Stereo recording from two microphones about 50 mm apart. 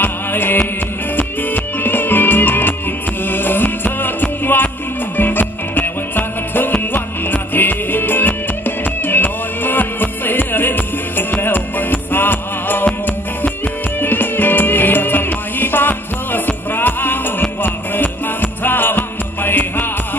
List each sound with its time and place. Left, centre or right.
0.0 s music: left
14.0 s music: left